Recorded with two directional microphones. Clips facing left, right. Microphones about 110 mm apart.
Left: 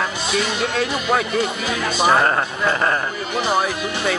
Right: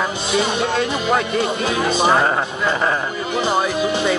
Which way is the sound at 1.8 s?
20° right (ahead or behind).